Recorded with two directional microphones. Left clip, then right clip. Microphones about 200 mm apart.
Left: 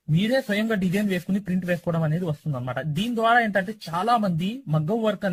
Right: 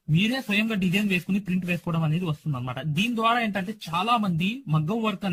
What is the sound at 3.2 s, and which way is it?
A man's voice, 20° left (ahead or behind).